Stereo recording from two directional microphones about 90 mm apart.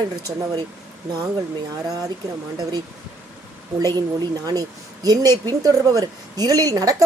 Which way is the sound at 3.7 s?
45° right (ahead or behind).